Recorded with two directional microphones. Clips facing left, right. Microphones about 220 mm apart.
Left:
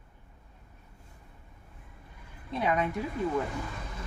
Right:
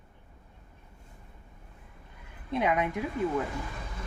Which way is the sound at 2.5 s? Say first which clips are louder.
Right 1 dB; 20° right (ahead or behind).